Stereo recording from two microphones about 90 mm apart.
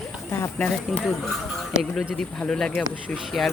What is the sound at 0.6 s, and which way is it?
Speech, 15° left (ahead or behind).